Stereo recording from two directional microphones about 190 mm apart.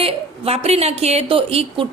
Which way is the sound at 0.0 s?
30° right (ahead or behind).